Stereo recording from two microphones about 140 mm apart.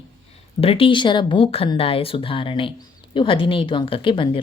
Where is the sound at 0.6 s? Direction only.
40° left (ahead or behind).